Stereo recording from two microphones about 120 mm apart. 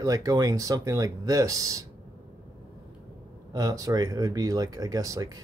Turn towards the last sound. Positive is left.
turn(degrees=-30)  # may be behind; listen again after turning